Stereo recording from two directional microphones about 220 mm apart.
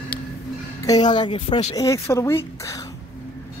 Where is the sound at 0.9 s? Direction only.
20° left (ahead or behind).